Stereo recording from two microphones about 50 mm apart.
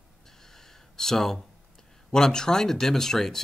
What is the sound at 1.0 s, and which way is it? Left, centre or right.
Speech, centre.